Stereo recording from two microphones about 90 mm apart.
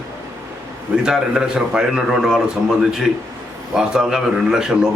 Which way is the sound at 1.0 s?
5° right (ahead or behind).